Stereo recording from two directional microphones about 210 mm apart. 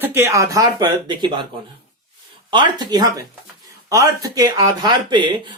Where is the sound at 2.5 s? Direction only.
20° right (ahead or behind).